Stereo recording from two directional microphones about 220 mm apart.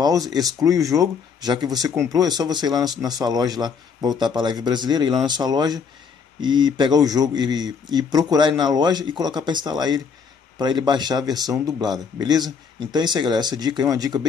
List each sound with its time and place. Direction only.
0.3 s speech: 15° right (ahead or behind)